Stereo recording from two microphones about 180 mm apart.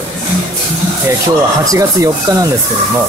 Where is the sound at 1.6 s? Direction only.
20° right (ahead or behind).